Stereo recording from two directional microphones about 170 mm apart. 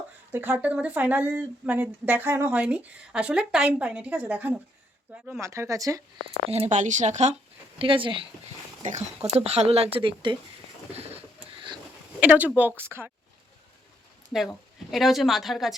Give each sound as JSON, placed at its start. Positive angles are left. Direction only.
{"t": 0.3, "sound": "speech", "side_deg": -10}
{"t": 6.5, "sound": "speech", "side_deg": -40}
{"t": 7.8, "sound": "speech", "side_deg": -30}
{"t": 10.9, "sound": "bird", "side_deg": -35}
{"t": 12.2, "sound": "speech", "side_deg": -10}
{"t": 14.3, "sound": "speech", "side_deg": 0}